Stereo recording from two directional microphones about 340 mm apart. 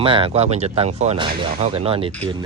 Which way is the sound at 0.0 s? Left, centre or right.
Centre.